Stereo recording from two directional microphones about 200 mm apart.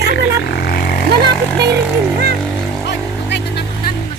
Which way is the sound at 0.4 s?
50° left (ahead or behind).